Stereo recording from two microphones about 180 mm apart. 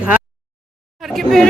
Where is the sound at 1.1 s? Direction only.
Centre (ahead or behind).